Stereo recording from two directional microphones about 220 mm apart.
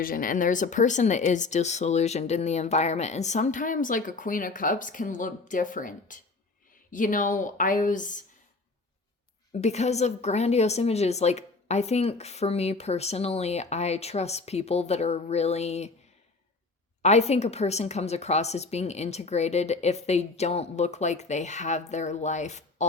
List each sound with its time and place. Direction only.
0.0 s speech: 40° left (ahead or behind)
9.5 s a woman's voice: 30° left (ahead or behind)
17.0 s speech: 30° left (ahead or behind)